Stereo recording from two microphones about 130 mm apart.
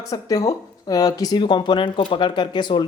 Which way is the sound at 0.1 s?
25° left (ahead or behind).